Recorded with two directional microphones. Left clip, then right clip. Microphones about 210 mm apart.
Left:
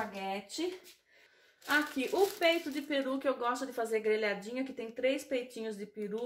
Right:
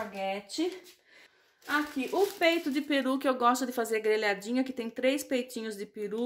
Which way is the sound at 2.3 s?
50° right (ahead or behind).